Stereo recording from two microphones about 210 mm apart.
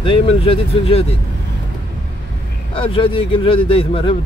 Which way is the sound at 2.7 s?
25° left (ahead or behind).